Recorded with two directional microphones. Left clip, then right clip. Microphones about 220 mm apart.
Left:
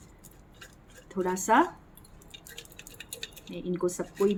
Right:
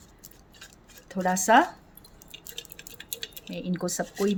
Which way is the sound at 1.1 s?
40° right (ahead or behind).